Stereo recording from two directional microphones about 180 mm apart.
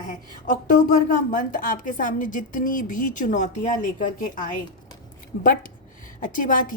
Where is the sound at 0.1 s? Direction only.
50° left (ahead or behind).